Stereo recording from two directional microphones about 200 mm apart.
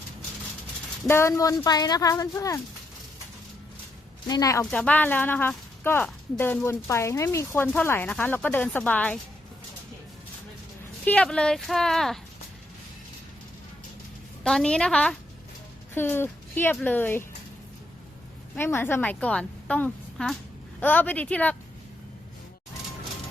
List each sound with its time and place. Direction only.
1.0 s speech: 15° left (ahead or behind)
4.3 s speech: 15° left (ahead or behind)
4.6 s speech: 5° left (ahead or behind)
11.0 s speech: 5° left (ahead or behind)
14.4 s speech: 5° left (ahead or behind)
18.5 s a woman's voice: 10° left (ahead or behind)